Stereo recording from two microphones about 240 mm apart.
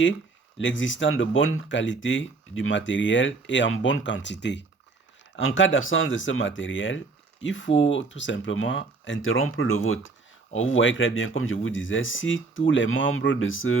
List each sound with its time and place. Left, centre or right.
0.6 s speech: left